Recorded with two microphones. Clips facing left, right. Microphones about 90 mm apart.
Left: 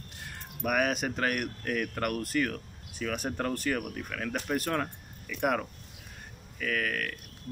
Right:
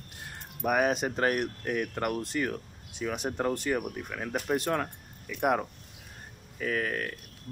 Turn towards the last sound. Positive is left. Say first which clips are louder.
# right 1 dB
turn(degrees=-30)  # may be behind; listen again after turning